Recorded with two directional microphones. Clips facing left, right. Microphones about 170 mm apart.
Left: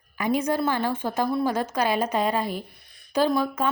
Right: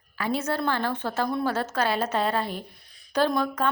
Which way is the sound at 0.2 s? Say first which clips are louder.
Left 3 dB; 15° left (ahead or behind).